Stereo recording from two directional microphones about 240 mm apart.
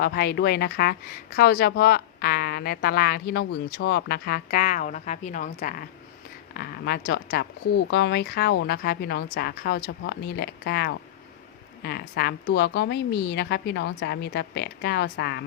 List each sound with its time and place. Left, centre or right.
0.0 s a woman's voice: left